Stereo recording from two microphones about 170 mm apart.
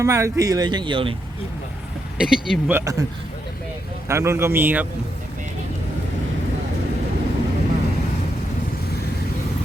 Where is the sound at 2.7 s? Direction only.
15° right (ahead or behind).